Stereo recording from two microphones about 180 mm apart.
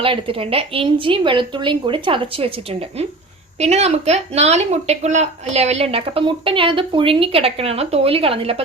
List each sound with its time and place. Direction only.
0.0 s speech: 30° right (ahead or behind)
3.6 s a woman's voice: 35° right (ahead or behind)